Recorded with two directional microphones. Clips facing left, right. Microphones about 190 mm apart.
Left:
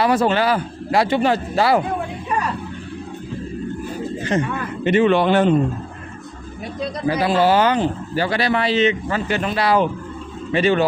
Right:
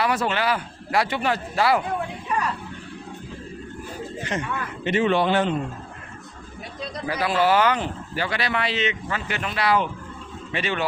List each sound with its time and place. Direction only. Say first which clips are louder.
0.0 s speech: left 6 dB; 30° left (ahead or behind)
4.2 s speech: left 8 dB; 35° left (ahead or behind)
4.8 s speech: left 5 dB; 60° left (ahead or behind)
7.0 s speech: left 5 dB; 30° left (ahead or behind)